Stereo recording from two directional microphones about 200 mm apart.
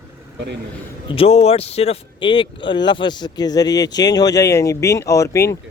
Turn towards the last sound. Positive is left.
turn(degrees=15)  # may be behind; listen again after turning